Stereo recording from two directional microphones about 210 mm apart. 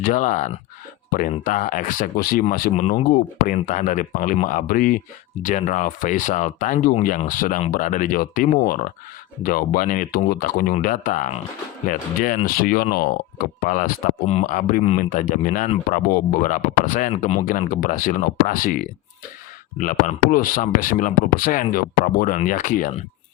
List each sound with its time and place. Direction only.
0.0 s speech: 40° left (ahead or behind)